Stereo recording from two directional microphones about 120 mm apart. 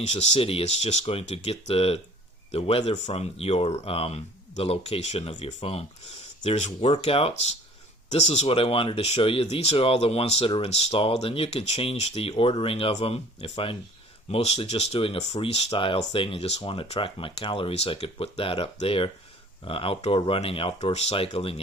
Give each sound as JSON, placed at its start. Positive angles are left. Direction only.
{"t": 0.0, "sound": "speech", "side_deg": 65}
{"t": 6.9, "sound": "speech", "side_deg": 50}
{"t": 8.1, "sound": "speech", "side_deg": 65}